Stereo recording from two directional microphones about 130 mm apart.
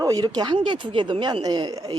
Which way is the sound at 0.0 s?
25° right (ahead or behind).